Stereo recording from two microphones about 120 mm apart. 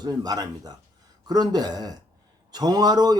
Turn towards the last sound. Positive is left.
turn(degrees=-35)  # may be behind; listen again after turning